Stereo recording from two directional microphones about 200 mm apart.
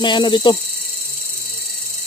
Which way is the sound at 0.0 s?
25° left (ahead or behind).